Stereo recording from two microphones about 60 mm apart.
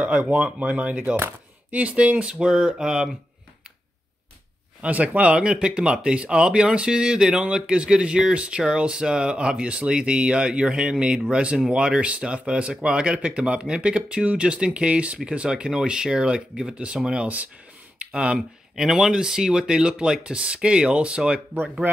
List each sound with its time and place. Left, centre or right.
0.0 s speech: right
4.8 s speech: right
17.9 s a sound: centre
18.8 s speech: centre